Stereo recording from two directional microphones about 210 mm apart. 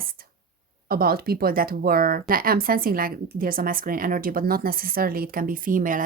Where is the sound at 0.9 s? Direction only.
45° right (ahead or behind).